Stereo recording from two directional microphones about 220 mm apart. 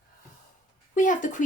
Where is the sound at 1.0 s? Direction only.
35° left (ahead or behind).